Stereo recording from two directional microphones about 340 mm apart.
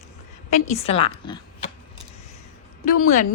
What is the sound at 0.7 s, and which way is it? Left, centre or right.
Speech, centre.